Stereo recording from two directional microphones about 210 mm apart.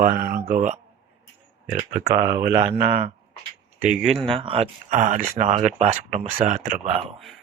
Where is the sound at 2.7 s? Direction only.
25° right (ahead or behind).